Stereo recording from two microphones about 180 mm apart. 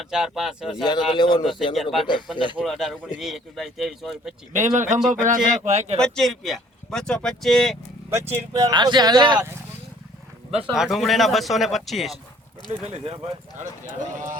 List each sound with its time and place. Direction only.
0.0 s speech: centre (ahead or behind)
0.9 s speech: 25° left (ahead or behind)
1.7 s speech: centre (ahead or behind)
2.3 s speech: 25° left (ahead or behind)
2.6 s speech: centre (ahead or behind)
4.5 s speech: 45° right (ahead or behind)
6.0 s speech: 5° left (ahead or behind)
8.1 s speech: 15° right (ahead or behind)
10.6 s speech: 5° right (ahead or behind)
12.9 s speech: 35° right (ahead or behind)